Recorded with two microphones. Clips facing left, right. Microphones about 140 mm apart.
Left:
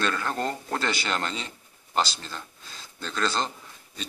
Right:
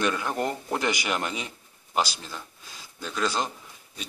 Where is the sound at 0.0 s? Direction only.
15° right (ahead or behind).